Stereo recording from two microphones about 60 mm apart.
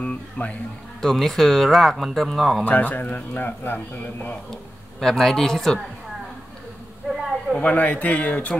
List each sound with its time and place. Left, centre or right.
0.0 s speech: left
1.0 s speech: centre
2.6 s a man's voice: left
5.0 s speech: centre
7.5 s a man's voice: left